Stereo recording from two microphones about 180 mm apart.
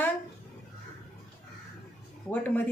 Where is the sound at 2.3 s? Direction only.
10° left (ahead or behind).